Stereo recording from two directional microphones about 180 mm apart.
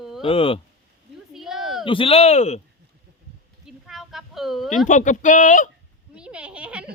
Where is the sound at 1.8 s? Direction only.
30° left (ahead or behind).